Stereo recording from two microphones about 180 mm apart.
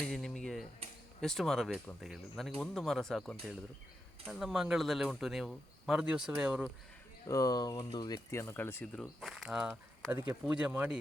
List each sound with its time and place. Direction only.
0.0 s typewriter: 5° left (ahead or behind)
1.2 s speech: centre (ahead or behind)
7.3 s speech: 20° left (ahead or behind)
9.2 s speech: centre (ahead or behind)